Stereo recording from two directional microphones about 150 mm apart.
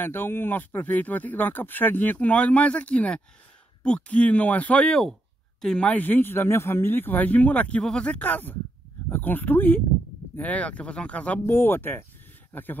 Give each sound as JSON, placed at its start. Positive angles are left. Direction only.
{"t": 0.0, "sound": "speech", "side_deg": 15}